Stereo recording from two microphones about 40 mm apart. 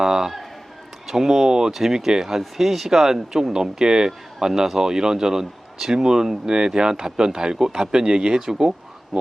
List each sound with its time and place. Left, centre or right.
0.0 s speech: centre